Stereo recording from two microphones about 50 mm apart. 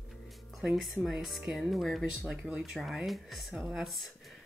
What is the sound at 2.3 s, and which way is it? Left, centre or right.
Speech, centre.